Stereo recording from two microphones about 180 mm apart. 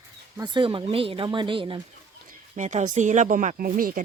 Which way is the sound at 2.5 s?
40° right (ahead or behind).